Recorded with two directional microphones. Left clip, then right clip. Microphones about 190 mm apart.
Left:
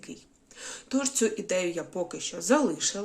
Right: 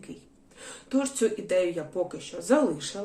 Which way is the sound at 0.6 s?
30° left (ahead or behind).